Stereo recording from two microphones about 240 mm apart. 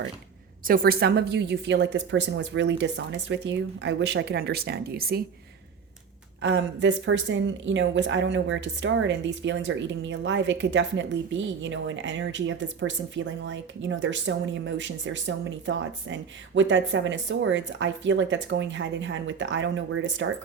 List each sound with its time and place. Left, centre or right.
0.6 s a woman's voice: right
6.4 s a woman's voice: right